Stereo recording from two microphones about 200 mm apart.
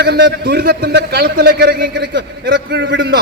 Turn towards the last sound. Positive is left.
turn(degrees=-60)  # may be behind; listen again after turning